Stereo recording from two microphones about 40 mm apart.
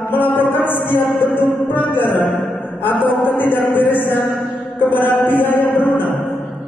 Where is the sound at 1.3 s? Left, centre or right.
Left.